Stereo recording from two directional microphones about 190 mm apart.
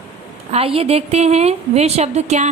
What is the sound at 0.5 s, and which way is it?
A woman's voice, 30° right (ahead or behind).